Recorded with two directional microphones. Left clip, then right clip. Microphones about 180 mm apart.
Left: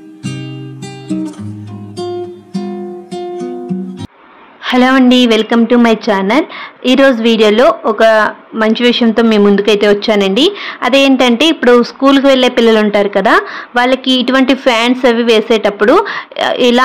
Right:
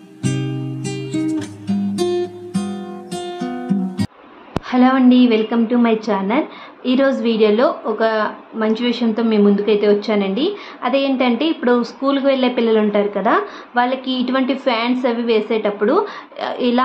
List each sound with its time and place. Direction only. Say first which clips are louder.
4.6 s a woman's voice: left 6 dB; 45° left (ahead or behind)